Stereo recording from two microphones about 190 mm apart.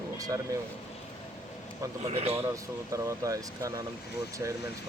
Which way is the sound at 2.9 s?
15° right (ahead or behind).